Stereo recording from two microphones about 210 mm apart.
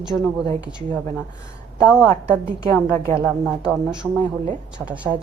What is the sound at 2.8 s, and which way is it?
Speech, 10° left (ahead or behind).